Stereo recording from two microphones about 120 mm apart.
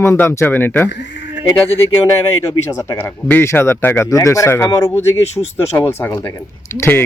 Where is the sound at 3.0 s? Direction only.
15° left (ahead or behind).